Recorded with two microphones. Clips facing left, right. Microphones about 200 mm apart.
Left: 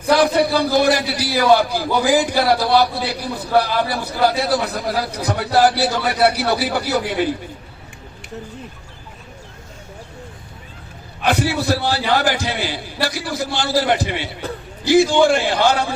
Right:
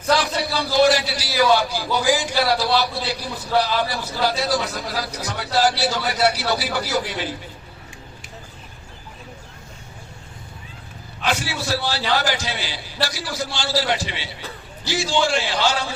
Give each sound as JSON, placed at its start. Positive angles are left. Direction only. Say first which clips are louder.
{"t": 0.1, "sound": "a man's voice", "louder": "left 6 dB", "side_deg": 55}
{"t": 11.2, "sound": "a man's voice", "louder": "left 6 dB", "side_deg": 55}